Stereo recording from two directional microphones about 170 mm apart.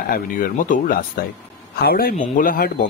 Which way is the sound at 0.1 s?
50° left (ahead or behind).